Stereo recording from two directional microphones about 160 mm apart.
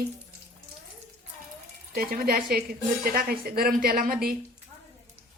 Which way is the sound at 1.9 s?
70° right (ahead or behind).